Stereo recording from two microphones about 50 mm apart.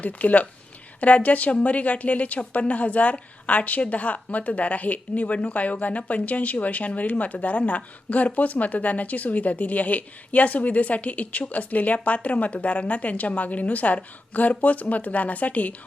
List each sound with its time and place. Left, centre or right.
0.0 s a woman's voice: left